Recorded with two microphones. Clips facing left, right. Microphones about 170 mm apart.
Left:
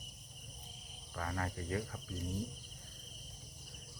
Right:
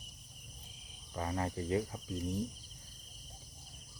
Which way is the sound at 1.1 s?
20° right (ahead or behind).